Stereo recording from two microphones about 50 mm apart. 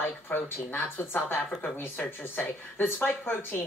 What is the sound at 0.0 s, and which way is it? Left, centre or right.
Speech, left.